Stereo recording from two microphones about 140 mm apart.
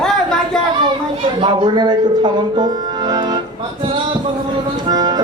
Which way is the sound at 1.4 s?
30° right (ahead or behind).